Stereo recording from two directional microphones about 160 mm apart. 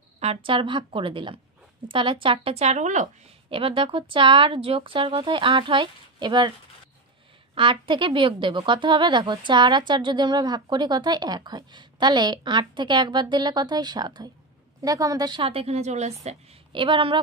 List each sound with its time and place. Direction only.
0.2 s speech: 35° right (ahead or behind)
3.4 s speech: 35° right (ahead or behind)
7.5 s a woman's voice: 35° right (ahead or behind)